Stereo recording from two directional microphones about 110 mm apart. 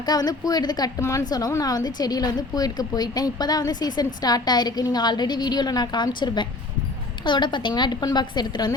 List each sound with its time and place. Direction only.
0.0 s a woman's voice: 35° left (ahead or behind)